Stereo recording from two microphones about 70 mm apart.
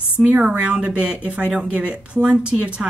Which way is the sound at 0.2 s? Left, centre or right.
Centre.